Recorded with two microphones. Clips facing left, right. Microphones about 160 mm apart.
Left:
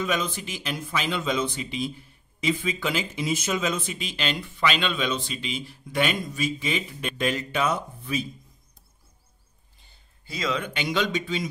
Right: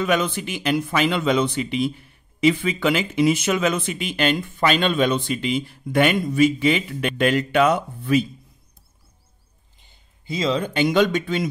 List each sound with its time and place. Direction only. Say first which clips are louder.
0.0 s speech: right 6 dB; 65° right (ahead or behind)
9.8 s a sound: right 2 dB; 20° right (ahead or behind); by 10.9 s 35° right (ahead or behind)
10.9 s speech: right 5 dB; 55° right (ahead or behind)